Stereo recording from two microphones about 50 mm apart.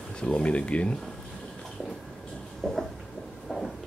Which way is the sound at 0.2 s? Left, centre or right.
Left.